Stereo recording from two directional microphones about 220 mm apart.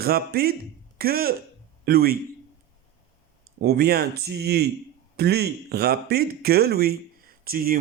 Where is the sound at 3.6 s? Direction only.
45° right (ahead or behind).